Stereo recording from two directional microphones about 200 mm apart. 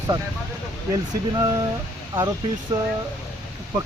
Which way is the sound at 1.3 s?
20° right (ahead or behind).